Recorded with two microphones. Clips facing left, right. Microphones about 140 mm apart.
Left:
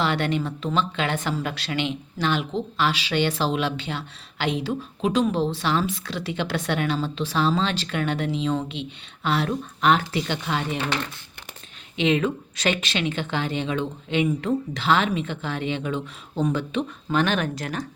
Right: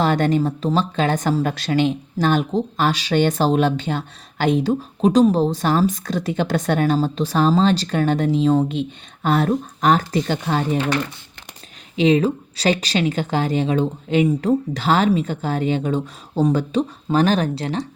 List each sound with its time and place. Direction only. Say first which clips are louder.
0.0 s speech: right 6 dB; 40° right (ahead or behind)
11.9 s speech: right 6 dB; 35° right (ahead or behind)